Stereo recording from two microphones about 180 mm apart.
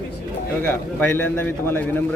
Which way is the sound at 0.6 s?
10° left (ahead or behind).